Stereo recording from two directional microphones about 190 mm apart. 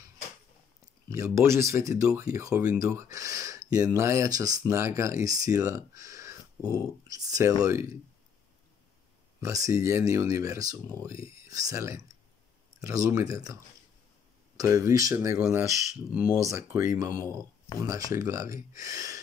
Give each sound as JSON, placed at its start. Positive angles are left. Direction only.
{"t": 1.1, "sound": "speech", "side_deg": -15}
{"t": 9.4, "sound": "speech", "side_deg": -15}
{"t": 14.6, "sound": "speech", "side_deg": -15}